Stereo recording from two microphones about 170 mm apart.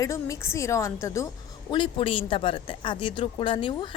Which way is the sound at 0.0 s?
20° left (ahead or behind).